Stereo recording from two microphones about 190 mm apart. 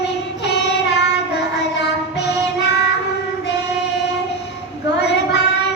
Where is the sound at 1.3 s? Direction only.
60° left (ahead or behind).